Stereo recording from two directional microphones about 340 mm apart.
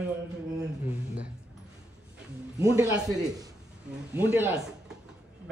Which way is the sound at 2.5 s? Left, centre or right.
Centre.